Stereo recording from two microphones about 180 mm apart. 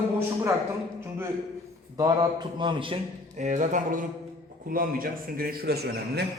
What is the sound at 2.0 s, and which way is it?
Speech, 25° right (ahead or behind).